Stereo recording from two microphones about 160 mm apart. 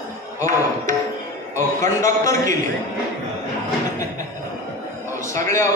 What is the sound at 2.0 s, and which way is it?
Speech, 20° left (ahead or behind).